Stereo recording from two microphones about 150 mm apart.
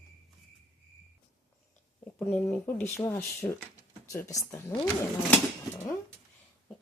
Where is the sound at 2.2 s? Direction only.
10° left (ahead or behind).